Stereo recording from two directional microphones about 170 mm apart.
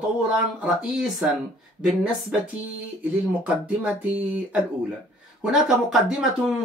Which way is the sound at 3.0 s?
5° right (ahead or behind).